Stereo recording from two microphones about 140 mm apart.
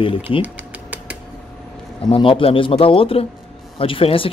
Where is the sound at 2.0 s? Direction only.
40° left (ahead or behind).